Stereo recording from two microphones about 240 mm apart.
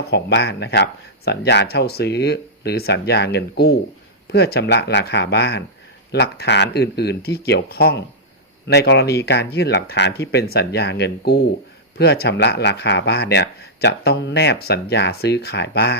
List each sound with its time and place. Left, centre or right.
0.0 s speech: left